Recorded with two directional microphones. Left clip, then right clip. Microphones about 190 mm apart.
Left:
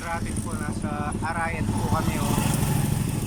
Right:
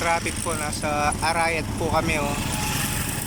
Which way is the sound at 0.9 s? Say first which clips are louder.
Right 8 dB; 15° right (ahead or behind).